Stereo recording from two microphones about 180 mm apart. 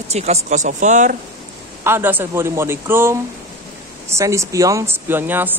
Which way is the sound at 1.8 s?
10° right (ahead or behind).